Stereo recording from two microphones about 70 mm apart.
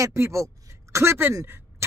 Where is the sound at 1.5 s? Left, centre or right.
Right.